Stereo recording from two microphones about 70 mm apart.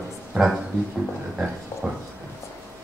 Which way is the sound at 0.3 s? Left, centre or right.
Centre.